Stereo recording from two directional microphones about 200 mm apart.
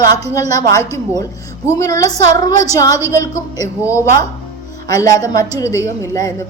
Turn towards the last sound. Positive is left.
turn(degrees=15)  # may be behind; listen again after turning